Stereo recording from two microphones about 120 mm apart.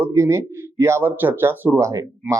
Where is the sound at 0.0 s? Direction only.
25° right (ahead or behind).